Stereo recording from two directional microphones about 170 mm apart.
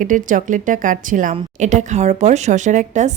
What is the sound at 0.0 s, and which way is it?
Speech, 50° right (ahead or behind).